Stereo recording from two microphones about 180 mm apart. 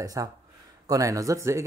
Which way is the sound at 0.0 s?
20° right (ahead or behind).